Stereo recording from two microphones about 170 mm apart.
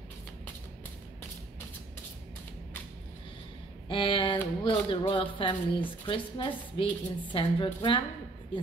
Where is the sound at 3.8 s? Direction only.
30° left (ahead or behind).